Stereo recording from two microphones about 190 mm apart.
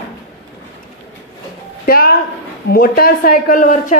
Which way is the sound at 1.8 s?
50° left (ahead or behind).